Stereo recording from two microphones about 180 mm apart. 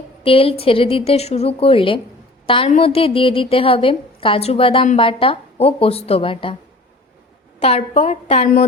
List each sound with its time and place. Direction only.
0.2 s a woman's voice: 30° left (ahead or behind)
7.6 s a woman's voice: 35° left (ahead or behind)